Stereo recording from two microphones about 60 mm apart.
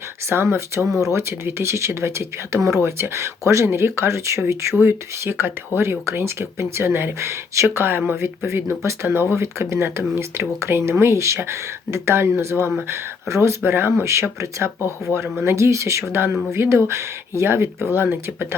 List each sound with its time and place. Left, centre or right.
0.3 s speech: right
7.8 s speech: right